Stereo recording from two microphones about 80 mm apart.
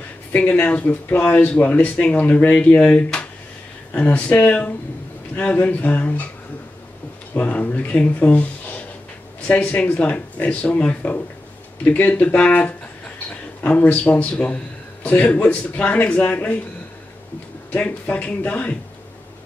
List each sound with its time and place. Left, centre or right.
0.3 s speech: left
7.3 s speech: left
17.7 s speech: centre